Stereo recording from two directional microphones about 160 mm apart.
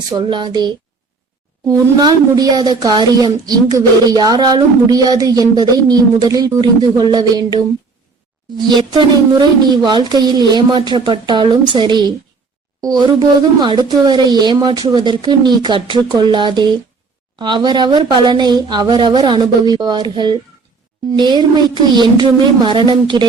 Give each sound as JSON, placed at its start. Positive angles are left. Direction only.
{"t": 0.1, "sound": "speech", "side_deg": -30}